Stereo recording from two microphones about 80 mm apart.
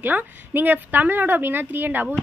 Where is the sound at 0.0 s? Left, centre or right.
Right.